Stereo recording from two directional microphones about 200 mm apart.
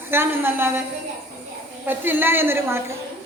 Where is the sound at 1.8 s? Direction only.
10° right (ahead or behind).